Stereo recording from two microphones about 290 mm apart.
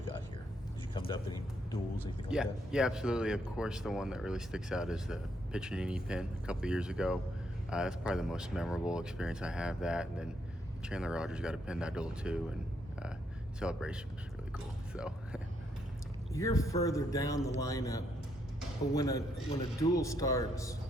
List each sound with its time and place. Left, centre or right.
0.9 s a sound: centre
2.3 s speech: centre
13.6 s speech: centre
14.5 s biting: centre
16.3 s a man's voice: centre